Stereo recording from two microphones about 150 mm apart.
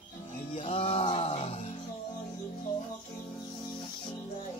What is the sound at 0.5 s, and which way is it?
Music, 40° left (ahead or behind).